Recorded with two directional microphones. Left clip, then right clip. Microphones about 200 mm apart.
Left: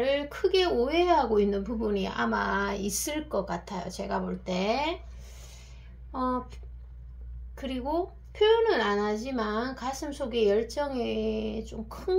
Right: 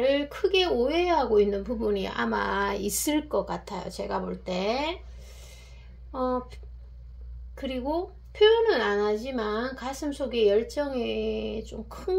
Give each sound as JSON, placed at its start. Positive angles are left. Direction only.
{"t": 0.0, "sound": "speech", "side_deg": -20}
{"t": 6.1, "sound": "speech", "side_deg": -25}